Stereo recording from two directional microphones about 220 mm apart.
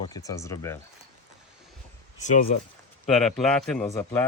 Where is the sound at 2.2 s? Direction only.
35° left (ahead or behind).